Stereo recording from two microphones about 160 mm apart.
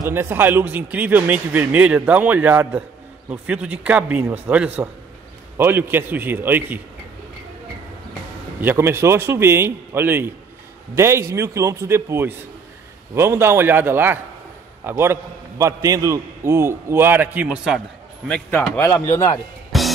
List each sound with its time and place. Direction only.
0.1 s a man's voice: 15° right (ahead or behind)
8.5 s a man's voice: 15° right (ahead or behind)
18.8 s speech: 15° left (ahead or behind)
19.7 s music: centre (ahead or behind)